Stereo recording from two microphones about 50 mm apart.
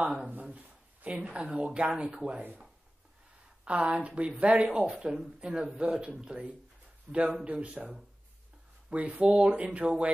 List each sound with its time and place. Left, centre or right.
0.0 s speech: right
3.6 s speech: right
8.9 s speech: right